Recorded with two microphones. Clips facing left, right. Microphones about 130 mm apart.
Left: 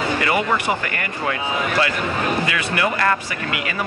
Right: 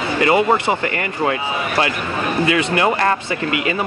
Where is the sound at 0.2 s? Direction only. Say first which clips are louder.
Right 10 dB; 25° right (ahead or behind).